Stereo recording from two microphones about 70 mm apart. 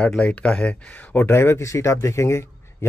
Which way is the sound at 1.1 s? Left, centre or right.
Left.